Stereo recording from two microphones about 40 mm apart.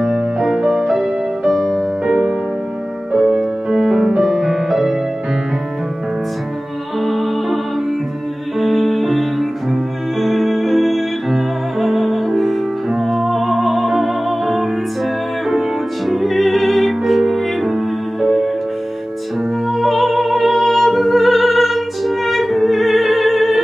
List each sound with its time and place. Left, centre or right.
0.0 s music: centre
2.0 s music: centre
4.2 s music: centre
7.0 s music: centre
8.5 s music: centre
16.1 s music: centre
19.7 s music: centre